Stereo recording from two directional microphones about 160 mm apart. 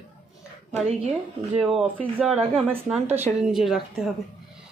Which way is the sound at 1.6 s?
Centre (ahead or behind).